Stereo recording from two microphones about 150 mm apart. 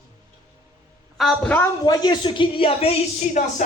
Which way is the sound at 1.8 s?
25° left (ahead or behind).